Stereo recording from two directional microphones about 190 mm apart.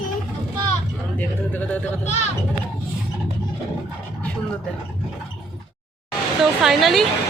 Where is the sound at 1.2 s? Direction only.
10° left (ahead or behind).